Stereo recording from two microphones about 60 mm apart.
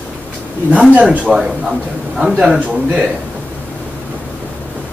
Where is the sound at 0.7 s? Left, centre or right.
Right.